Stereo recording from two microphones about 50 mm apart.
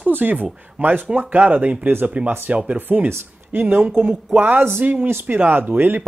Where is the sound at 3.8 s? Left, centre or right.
Right.